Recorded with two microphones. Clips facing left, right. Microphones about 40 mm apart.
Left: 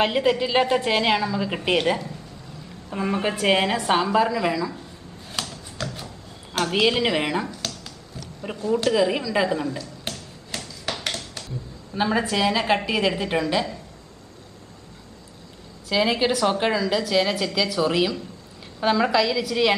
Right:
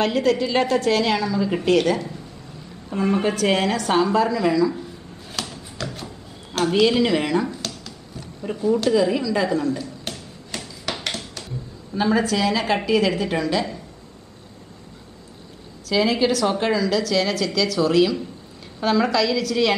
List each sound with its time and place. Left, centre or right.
0.0 s a woman's voice: left
2.9 s a woman's voice: centre
5.4 s a sound: centre
6.7 s a woman's voice: centre
7.6 s a sound: centre
8.6 s a woman's voice: centre
9.8 s a sound: centre
11.9 s a woman's voice: centre
15.9 s a woman's voice: centre